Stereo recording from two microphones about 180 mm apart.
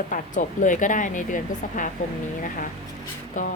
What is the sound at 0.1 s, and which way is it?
Speech, 45° left (ahead or behind).